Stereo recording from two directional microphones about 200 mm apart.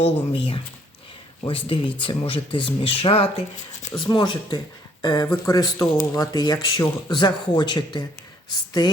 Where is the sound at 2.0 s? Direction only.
25° left (ahead or behind).